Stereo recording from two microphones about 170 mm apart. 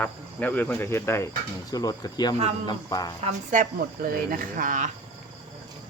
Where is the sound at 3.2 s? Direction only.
50° right (ahead or behind).